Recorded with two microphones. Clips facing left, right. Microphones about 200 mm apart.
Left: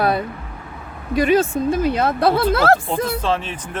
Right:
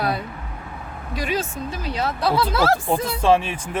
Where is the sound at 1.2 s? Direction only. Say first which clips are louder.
Left 10 dB; 55° left (ahead or behind).